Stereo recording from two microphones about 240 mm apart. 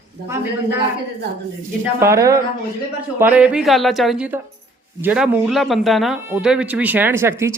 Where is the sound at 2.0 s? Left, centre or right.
Centre.